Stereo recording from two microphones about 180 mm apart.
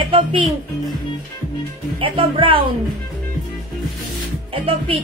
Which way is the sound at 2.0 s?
30° right (ahead or behind).